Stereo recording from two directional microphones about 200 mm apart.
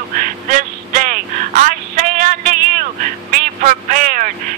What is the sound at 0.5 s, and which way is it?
Vehicle, 40° right (ahead or behind).